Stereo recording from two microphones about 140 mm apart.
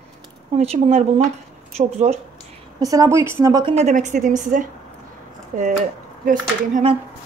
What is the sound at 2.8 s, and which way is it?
Speech, 25° right (ahead or behind).